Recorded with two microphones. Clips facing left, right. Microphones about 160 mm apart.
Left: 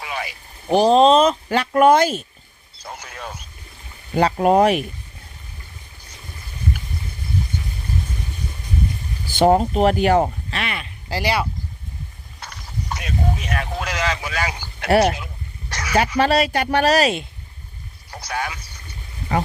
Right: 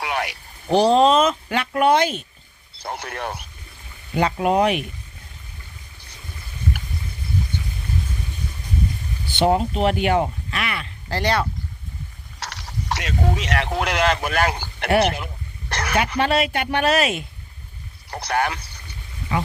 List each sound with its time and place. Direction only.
0.0 s a sound: 70° right (ahead or behind)
0.7 s speech: 20° left (ahead or behind); by 2.2 s 40° left (ahead or behind)
2.7 s speech: 65° right (ahead or behind)
4.1 s speech: 40° left (ahead or behind)
9.3 s speech: 45° left (ahead or behind); by 11.4 s 10° left (ahead or behind)
12.4 s speech: 90° right; by 14.8 s 55° right (ahead or behind)
15.7 s a sound: 60° right (ahead or behind)
16.1 s speech: 40° left (ahead or behind)
18.1 s speech: 65° right (ahead or behind)